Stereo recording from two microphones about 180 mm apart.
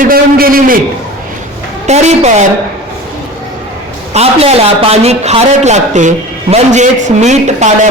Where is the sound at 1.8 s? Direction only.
40° right (ahead or behind).